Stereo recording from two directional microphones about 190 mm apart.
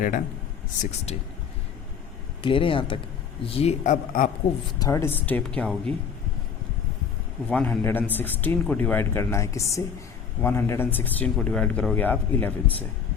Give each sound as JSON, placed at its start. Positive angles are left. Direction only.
{"t": 0.8, "sound": "speech", "side_deg": 35}
{"t": 2.4, "sound": "speech", "side_deg": 25}
{"t": 4.8, "sound": "a man's voice", "side_deg": 15}
{"t": 7.4, "sound": "a man's voice", "side_deg": 5}